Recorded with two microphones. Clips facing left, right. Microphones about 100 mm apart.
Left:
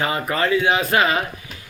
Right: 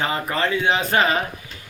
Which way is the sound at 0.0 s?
30° right (ahead or behind).